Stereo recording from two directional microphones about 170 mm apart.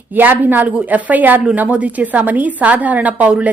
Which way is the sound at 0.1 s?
10° right (ahead or behind).